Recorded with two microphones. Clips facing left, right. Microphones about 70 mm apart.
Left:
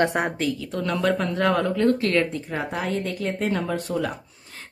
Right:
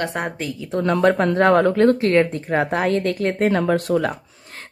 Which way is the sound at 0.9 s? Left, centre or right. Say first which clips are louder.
Right 7 dB; right.